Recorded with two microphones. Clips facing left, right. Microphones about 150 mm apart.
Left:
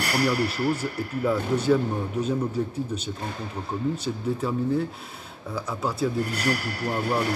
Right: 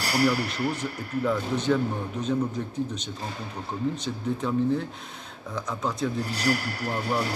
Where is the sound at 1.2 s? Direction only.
10° left (ahead or behind).